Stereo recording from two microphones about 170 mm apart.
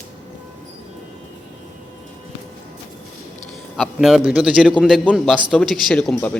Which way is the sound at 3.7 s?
Centre (ahead or behind).